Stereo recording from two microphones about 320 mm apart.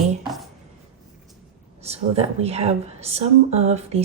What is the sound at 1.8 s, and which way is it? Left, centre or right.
A woman's voice, centre.